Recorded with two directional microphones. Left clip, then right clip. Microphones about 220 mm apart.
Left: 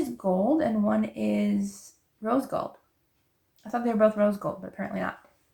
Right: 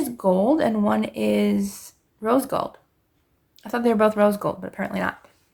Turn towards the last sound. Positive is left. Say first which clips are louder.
# right 6 dB
turn(degrees=-50)  # may be behind; listen again after turning